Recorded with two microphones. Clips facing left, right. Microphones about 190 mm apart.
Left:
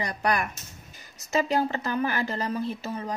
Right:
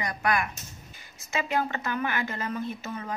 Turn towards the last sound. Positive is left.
turn(degrees=30)  # may be behind; listen again after turning